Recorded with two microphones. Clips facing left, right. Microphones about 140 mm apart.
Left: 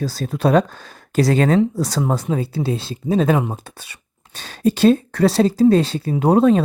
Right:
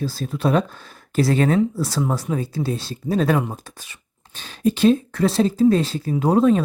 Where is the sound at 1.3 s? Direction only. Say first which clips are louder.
Left 2 dB; 35° left (ahead or behind).